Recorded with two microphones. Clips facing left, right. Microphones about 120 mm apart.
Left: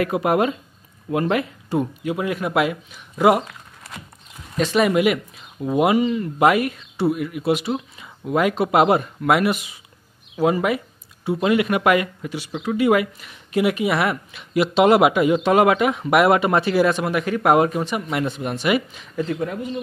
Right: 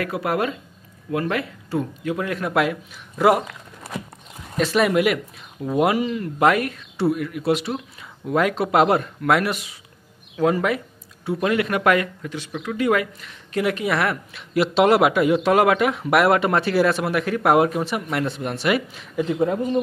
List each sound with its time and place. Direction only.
0.0 s speech: 20° left (ahead or behind); by 3.3 s 5° left (ahead or behind)
4.6 s speech: centre (ahead or behind)
19.2 s speech: 25° right (ahead or behind)